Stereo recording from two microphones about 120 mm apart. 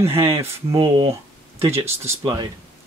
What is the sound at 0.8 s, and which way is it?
Speech, 40° right (ahead or behind).